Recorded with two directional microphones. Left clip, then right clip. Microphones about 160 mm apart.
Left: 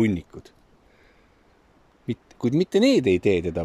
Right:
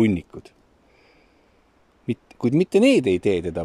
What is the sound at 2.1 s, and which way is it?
Speech, 5° right (ahead or behind).